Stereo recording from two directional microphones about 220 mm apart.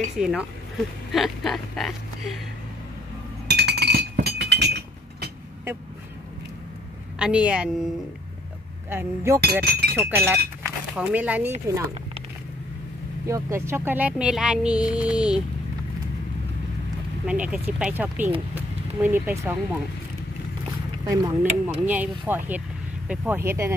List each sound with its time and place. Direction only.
0.2 s speech: centre (ahead or behind)
3.4 s chink: 50° right (ahead or behind)
7.2 s speech: 5° right (ahead or behind)
8.9 s speech: 10° right (ahead or behind)
9.4 s speech: 45° right (ahead or behind)
9.9 s speech: 10° right (ahead or behind)
10.6 s a sound: 5° right (ahead or behind)
13.3 s speech: 10° right (ahead or behind)
17.3 s speech: 5° right (ahead or behind)
21.1 s speech: 5° right (ahead or behind)